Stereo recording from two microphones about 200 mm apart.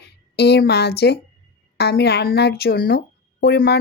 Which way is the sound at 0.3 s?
55° left (ahead or behind).